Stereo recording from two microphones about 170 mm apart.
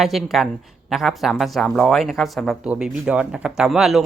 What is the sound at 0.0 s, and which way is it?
Speech, centre (ahead or behind).